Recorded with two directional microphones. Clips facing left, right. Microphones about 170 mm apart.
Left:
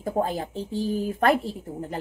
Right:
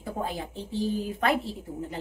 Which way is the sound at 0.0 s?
45° left (ahead or behind).